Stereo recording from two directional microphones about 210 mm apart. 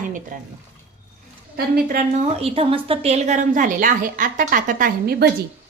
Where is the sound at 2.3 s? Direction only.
25° right (ahead or behind); by 5.2 s 45° right (ahead or behind).